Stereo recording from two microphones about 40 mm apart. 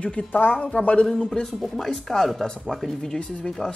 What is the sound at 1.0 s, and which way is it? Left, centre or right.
Speech, centre.